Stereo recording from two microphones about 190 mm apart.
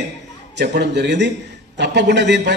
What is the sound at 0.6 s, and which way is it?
A man's voice, 65° right (ahead or behind).